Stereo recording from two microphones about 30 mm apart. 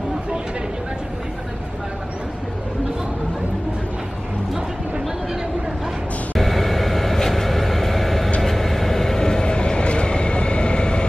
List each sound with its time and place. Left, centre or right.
6.3 s vehicle: centre
8.4 s train: centre; by 11.1 s left